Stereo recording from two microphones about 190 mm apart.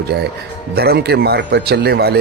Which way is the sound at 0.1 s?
55° right (ahead or behind).